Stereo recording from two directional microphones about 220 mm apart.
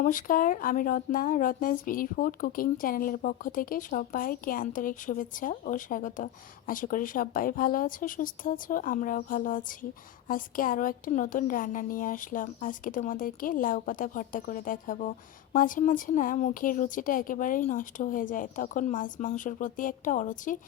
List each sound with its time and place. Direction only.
0.0 s speech: 35° left (ahead or behind)